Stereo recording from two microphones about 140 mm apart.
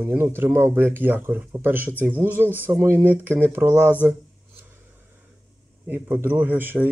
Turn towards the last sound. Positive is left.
turn(degrees=-15)  # may be behind; listen again after turning